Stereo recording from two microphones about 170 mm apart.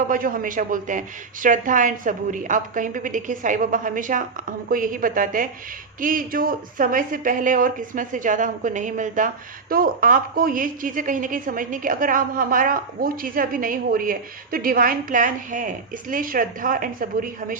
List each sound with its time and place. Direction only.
0.1 s speech: 55° right (ahead or behind)